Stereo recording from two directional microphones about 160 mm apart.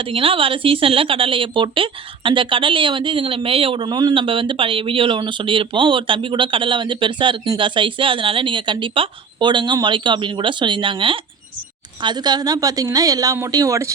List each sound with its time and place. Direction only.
0.0 s a woman's voice: 35° right (ahead or behind); by 13.9 s 20° right (ahead or behind)